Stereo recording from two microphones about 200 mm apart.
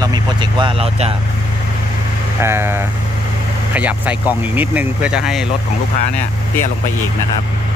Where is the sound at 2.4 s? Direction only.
10° right (ahead or behind).